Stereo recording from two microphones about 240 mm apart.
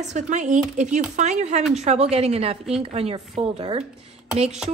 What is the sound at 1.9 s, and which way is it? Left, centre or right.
Speech, right.